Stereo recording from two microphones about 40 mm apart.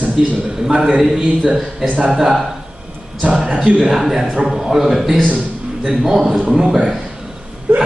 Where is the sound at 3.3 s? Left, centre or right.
Centre.